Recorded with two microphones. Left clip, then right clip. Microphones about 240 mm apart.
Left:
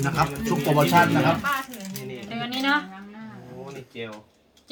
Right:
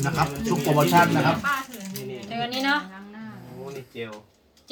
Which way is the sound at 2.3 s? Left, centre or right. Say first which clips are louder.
Even; centre.